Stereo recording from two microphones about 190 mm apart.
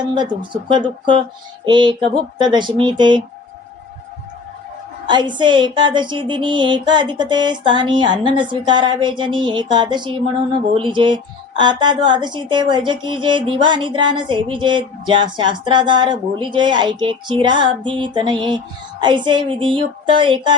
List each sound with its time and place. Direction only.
0.1 s speech: 25° right (ahead or behind)
5.0 s speech: 25° right (ahead or behind)